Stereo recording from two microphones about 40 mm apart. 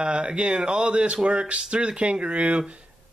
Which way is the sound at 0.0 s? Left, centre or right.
Right.